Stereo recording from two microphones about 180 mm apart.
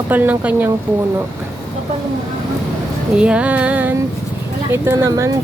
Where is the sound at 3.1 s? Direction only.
5° right (ahead or behind).